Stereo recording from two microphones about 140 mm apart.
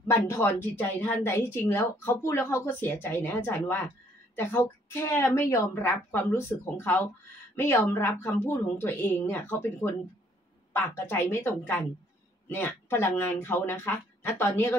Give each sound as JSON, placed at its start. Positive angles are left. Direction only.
{"t": 0.1, "sound": "a woman's voice", "side_deg": 20}